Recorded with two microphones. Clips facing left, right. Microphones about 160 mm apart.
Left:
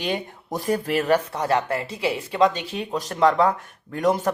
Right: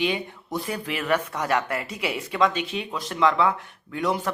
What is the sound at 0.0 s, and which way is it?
Speech, 45° left (ahead or behind).